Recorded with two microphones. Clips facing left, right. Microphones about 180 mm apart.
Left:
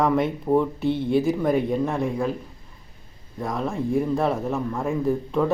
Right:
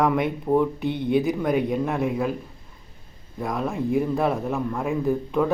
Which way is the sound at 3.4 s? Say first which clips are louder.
Even; centre (ahead or behind).